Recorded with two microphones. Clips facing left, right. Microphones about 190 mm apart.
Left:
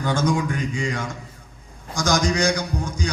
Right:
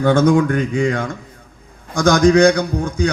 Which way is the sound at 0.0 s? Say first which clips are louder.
Right 9 dB; 60° right (ahead or behind).